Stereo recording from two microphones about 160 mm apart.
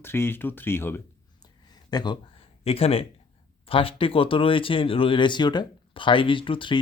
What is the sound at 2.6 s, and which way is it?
Speech, 40° left (ahead or behind).